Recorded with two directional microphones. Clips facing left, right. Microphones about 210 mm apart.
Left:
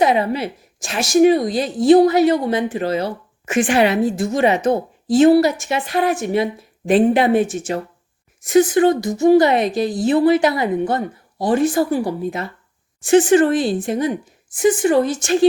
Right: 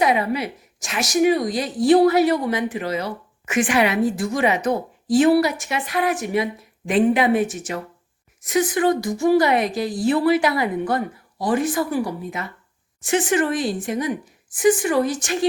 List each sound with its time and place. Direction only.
0.0 s a woman's voice: 25° left (ahead or behind)